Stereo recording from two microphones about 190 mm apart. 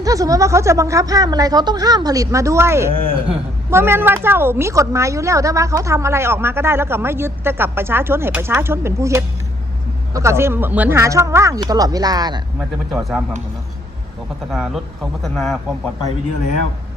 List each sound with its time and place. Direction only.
0.0 s a woman's voice: 20° right (ahead or behind)
12.5 s speech: centre (ahead or behind)
14.5 s speech: centre (ahead or behind)